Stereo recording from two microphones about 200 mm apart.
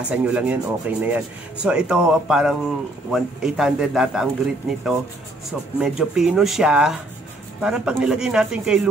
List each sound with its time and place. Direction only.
0.1 s speech: 5° right (ahead or behind)